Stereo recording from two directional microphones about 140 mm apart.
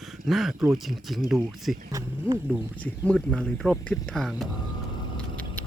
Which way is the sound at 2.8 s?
5° left (ahead or behind).